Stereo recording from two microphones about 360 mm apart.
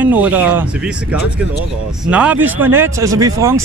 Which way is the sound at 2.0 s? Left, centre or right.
Centre.